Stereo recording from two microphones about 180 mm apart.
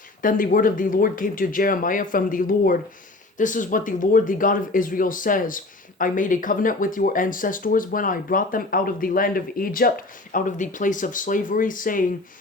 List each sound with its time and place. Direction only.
0.2 s speech: 50° left (ahead or behind)